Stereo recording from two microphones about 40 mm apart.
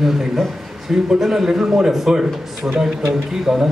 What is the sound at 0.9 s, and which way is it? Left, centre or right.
Speech, centre.